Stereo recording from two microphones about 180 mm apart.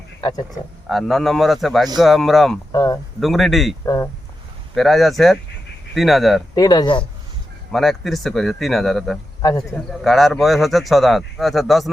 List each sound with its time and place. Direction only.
0.2 s speech: 20° left (ahead or behind)
0.9 s speech: centre (ahead or behind)
2.7 s speech: 20° left (ahead or behind)
3.2 s speech: centre (ahead or behind)
3.8 s speech: 20° left (ahead or behind)
4.7 s speech: centre (ahead or behind)
6.5 s speech: 20° left (ahead or behind)
7.7 s speech: centre (ahead or behind)
9.4 s speech: 20° left (ahead or behind)
9.7 s speech: centre (ahead or behind)